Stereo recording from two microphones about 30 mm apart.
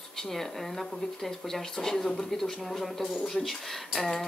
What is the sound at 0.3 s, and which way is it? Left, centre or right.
Speech, centre.